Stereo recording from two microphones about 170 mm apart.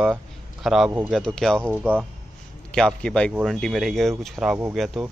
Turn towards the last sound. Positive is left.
turn(degrees=0)  # may be behind; listen again after turning